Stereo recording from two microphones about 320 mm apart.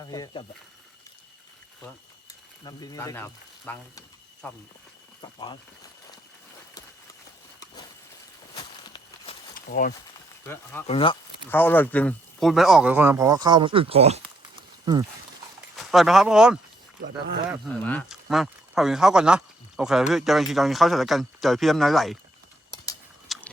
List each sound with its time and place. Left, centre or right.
0.0 s speech: centre
2.6 s speech: centre
5.2 s speech: centre
8.5 s a sound: centre
9.6 s speech: left
10.4 s speech: centre
15.7 s speech: centre
17.0 s speech: right
17.5 s speech: centre
23.3 s biting: centre